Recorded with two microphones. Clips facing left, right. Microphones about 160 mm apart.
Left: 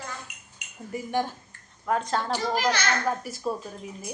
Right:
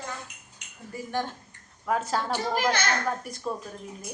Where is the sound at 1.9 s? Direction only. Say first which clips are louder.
Left 1 dB; 5° right (ahead or behind).